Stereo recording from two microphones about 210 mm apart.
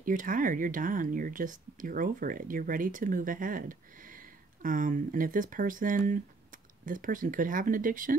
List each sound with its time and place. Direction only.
0.0 s speech: 40° right (ahead or behind)